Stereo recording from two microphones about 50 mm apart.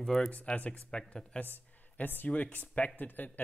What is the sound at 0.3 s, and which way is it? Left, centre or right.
Speech, left.